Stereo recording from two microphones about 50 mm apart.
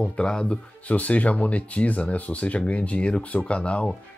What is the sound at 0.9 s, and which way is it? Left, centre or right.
Speech, left.